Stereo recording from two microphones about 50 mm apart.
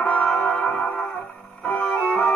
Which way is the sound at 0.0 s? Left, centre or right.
Left.